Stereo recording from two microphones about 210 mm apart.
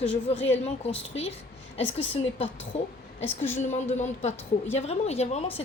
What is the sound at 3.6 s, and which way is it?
A woman's voice, 35° left (ahead or behind).